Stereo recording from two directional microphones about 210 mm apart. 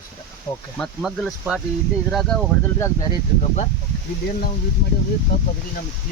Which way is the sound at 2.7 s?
15° left (ahead or behind).